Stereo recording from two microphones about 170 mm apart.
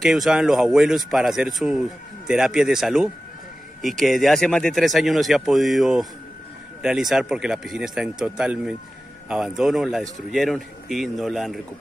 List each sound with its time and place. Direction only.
0.0 s speech: centre (ahead or behind)